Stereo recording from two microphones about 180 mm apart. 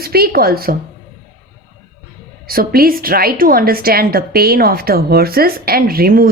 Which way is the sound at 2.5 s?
55° right (ahead or behind).